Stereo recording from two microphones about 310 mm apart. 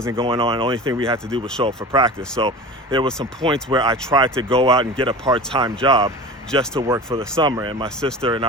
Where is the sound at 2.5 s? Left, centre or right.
Centre.